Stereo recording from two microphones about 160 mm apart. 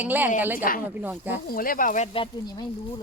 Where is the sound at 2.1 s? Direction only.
30° left (ahead or behind).